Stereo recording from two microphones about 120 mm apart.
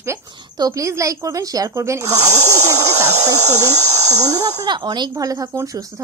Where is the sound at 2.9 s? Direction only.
70° right (ahead or behind).